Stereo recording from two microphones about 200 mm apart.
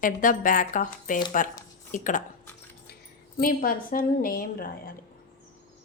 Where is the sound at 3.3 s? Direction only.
45° left (ahead or behind).